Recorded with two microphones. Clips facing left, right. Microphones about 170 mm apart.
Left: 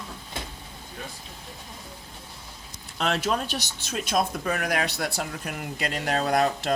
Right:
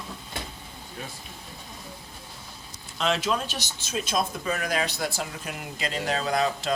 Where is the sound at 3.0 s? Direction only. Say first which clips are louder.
Even; 55° left (ahead or behind).